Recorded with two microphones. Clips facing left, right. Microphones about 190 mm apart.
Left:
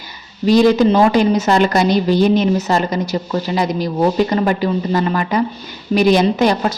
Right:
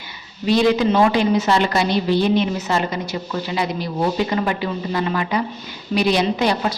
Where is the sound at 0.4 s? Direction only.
40° left (ahead or behind).